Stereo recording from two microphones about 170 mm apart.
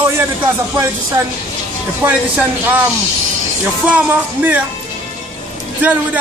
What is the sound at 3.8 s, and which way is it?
Speech, 10° right (ahead or behind).